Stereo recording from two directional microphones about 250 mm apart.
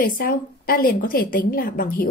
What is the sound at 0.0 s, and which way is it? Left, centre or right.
A woman's voice, left.